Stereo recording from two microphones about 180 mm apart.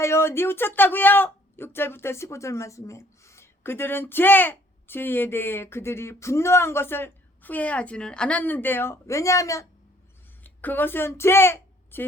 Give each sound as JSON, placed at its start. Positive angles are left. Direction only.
{"t": 0.0, "sound": "a woman's voice", "side_deg": 15}